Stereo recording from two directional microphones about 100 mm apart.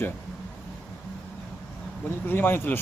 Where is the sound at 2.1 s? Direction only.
20° left (ahead or behind).